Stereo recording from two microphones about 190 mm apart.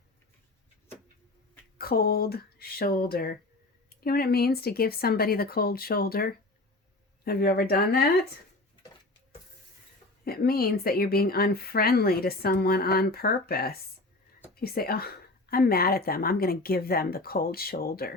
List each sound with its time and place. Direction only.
1.8 s speech: 55° left (ahead or behind)
10.2 s speech: 55° left (ahead or behind)